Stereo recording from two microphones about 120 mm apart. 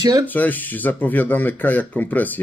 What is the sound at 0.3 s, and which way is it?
Speech, 15° left (ahead or behind).